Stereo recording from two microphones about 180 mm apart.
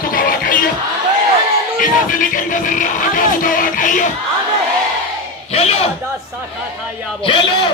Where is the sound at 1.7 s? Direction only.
50° left (ahead or behind).